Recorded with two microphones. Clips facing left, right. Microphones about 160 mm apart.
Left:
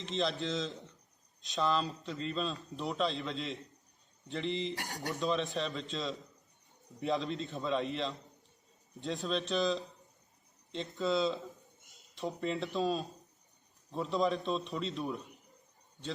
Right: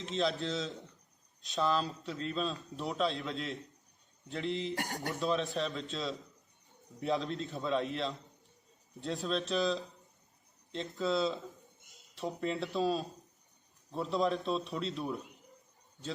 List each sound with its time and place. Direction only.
0.0 s a man's voice: centre (ahead or behind)
4.7 s speech: 45° right (ahead or behind)
5.2 s a man's voice: centre (ahead or behind)